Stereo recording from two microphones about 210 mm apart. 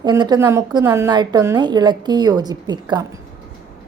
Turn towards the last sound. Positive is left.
turn(degrees=-20)  # may be behind; listen again after turning